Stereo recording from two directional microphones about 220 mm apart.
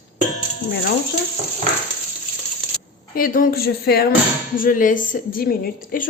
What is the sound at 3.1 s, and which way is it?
A woman's voice, 40° left (ahead or behind).